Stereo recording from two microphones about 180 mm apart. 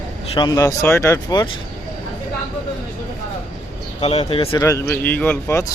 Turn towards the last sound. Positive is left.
turn(degrees=10)  # may be behind; listen again after turning